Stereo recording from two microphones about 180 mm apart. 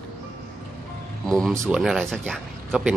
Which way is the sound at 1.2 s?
5° left (ahead or behind).